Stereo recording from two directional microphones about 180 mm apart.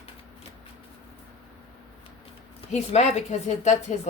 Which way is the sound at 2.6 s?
40° left (ahead or behind).